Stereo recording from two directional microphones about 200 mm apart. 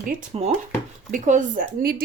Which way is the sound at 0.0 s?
40° right (ahead or behind).